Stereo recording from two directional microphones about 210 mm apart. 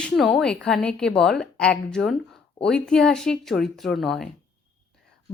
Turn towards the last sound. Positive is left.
turn(degrees=0)  # may be behind; listen again after turning